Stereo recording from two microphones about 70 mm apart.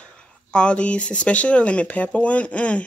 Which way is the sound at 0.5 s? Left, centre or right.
Centre.